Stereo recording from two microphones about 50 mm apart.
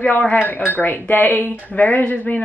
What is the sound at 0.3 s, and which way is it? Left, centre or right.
Speech, left.